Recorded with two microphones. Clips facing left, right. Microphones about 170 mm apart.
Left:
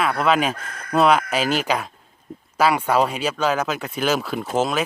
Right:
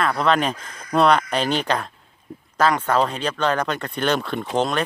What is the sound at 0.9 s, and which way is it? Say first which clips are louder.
Speech: even; 5° left (ahead or behind).